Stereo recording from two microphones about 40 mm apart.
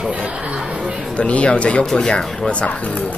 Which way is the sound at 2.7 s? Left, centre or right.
Left.